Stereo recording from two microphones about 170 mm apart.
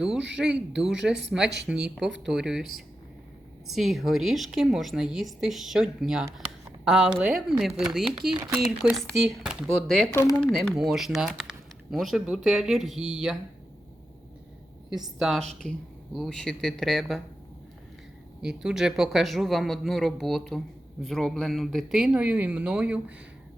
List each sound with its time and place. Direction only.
0.3 s a woman's voice: 5° right (ahead or behind)
10.1 s speech: 20° left (ahead or behind)
10.4 s a woman's voice: centre (ahead or behind)
14.8 s a woman's voice: centre (ahead or behind)
18.4 s a woman's voice: 5° right (ahead or behind)